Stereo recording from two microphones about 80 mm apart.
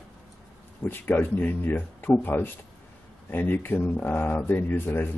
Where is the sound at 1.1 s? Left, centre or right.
Left.